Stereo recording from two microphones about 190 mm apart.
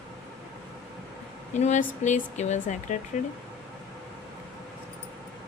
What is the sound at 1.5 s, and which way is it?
A woman's voice, 40° left (ahead or behind).